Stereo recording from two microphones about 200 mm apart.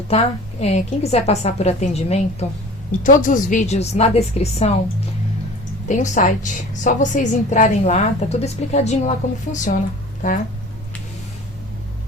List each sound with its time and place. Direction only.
0.6 s a woman's voice: 35° left (ahead or behind)
5.9 s a woman's voice: 35° left (ahead or behind)